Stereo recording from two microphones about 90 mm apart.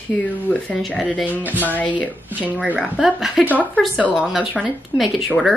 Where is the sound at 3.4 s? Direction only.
20° right (ahead or behind).